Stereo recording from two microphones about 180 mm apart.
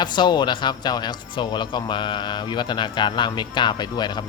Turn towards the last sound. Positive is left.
turn(degrees=25)  # may be behind; listen again after turning